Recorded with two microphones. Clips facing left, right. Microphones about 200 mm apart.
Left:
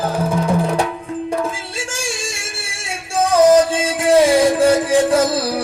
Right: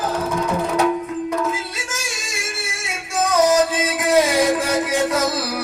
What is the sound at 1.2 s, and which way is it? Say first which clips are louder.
Music: left 3 dB; 30° left (ahead or behind).